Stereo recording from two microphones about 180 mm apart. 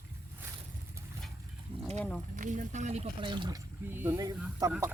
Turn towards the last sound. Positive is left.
turn(degrees=-20)  # may be behind; listen again after turning